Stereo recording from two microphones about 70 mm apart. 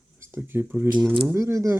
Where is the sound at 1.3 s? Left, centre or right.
Right.